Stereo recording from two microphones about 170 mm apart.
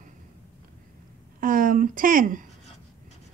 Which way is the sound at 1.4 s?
55° right (ahead or behind).